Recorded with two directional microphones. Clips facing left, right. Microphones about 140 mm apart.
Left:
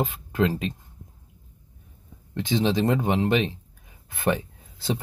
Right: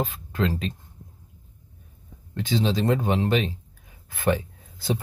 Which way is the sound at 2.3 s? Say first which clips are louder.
Left 1 dB; 20° left (ahead or behind).